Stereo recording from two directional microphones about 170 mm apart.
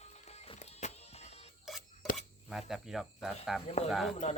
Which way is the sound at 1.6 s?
Centre (ahead or behind).